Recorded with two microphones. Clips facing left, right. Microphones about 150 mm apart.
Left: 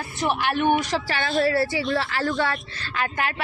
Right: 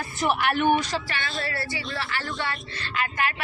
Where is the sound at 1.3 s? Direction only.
65° left (ahead or behind); by 2.3 s 90° left.